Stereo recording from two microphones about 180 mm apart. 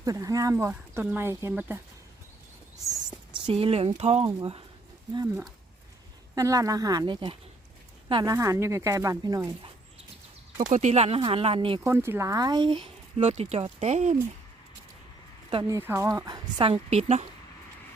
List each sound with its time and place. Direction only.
0.0 s speech: 20° right (ahead or behind)
3.4 s speech: 30° right (ahead or behind)
5.1 s speech: 15° right (ahead or behind)
10.6 s speech: 40° right (ahead or behind)
11.8 s speech: 15° right (ahead or behind)
13.2 s speech: 40° right (ahead or behind)
15.7 s speech: 15° right (ahead or behind); by 17.2 s 35° right (ahead or behind)